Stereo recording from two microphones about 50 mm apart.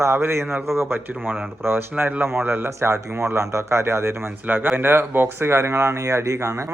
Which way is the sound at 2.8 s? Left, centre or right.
Right.